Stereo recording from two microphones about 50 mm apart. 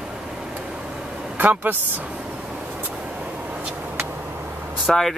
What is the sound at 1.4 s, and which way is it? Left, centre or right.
Speech, right.